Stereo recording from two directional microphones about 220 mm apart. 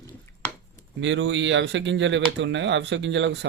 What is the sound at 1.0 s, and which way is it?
Speech, 55° right (ahead or behind).